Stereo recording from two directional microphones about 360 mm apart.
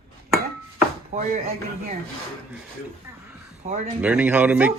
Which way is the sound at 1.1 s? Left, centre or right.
Centre.